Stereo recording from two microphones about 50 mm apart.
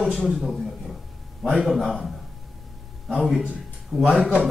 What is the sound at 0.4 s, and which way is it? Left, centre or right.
A man's voice, centre.